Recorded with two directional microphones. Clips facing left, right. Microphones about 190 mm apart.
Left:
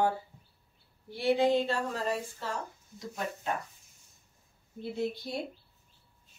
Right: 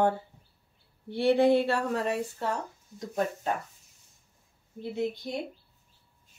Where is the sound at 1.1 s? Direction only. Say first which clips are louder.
Right 4 dB; 65° right (ahead or behind).